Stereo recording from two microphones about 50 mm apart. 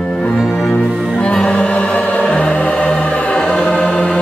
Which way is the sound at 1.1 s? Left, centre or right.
Left.